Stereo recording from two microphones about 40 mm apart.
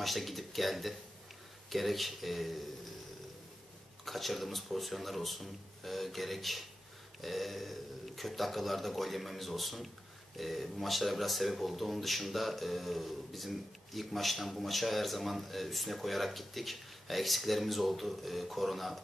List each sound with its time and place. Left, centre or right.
0.0 s speech: centre
4.0 s speech: centre